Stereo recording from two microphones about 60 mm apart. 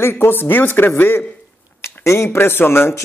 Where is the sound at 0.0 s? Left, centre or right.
Left.